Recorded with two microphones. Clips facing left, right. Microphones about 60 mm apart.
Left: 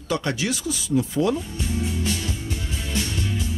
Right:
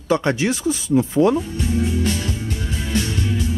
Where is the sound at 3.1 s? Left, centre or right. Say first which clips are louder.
Right 4 dB; right.